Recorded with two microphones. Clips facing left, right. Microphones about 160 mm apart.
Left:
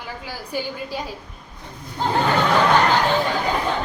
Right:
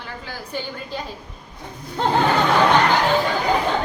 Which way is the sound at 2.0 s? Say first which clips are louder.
Right 2 dB; 75° right (ahead or behind).